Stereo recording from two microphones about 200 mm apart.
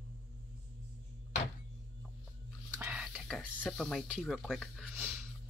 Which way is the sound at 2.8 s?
5° right (ahead or behind).